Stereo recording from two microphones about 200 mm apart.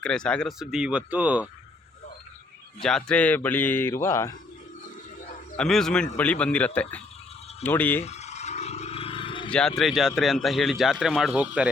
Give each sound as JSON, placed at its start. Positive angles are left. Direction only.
{"t": 0.0, "sound": "a man's voice", "side_deg": 5}
{"t": 2.8, "sound": "speech", "side_deg": 5}
{"t": 5.5, "sound": "a man's voice", "side_deg": 5}
{"t": 8.0, "sound": "roar", "side_deg": 35}
{"t": 9.5, "sound": "a man's voice", "side_deg": 5}